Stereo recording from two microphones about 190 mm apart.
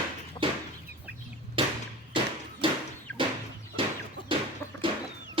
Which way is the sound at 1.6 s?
25° right (ahead or behind).